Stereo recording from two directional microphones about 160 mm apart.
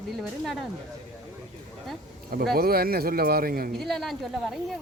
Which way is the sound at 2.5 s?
70° right (ahead or behind).